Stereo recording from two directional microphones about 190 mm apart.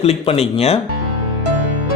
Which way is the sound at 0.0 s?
30° left (ahead or behind).